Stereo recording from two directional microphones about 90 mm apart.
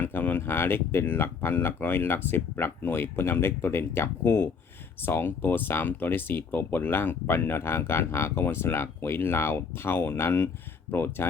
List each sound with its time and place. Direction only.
0.0 s speech: 20° left (ahead or behind)